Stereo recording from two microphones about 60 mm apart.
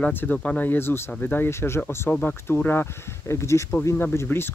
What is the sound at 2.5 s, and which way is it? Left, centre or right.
Speech, left.